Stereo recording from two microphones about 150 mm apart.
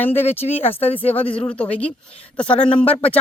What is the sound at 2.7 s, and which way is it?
Speech, 40° left (ahead or behind).